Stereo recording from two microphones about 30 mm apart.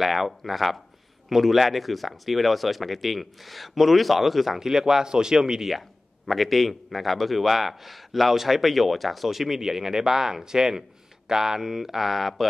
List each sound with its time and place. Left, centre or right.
0.0 s speech: centre
4.6 s speech: centre
5.8 s speech: centre